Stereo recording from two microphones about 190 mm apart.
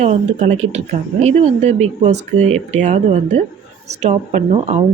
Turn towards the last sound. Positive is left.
turn(degrees=-35)  # may be behind; listen again after turning